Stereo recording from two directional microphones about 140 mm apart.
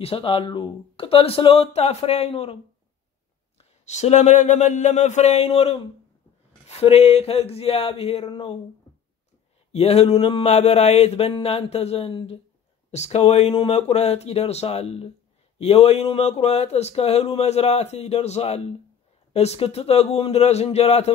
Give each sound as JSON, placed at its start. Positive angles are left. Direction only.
{"t": 0.0, "sound": "speech", "side_deg": 40}
{"t": 3.5, "sound": "a sound", "side_deg": 55}
{"t": 6.7, "sound": "speech", "side_deg": 50}
{"t": 9.7, "sound": "speech", "side_deg": 45}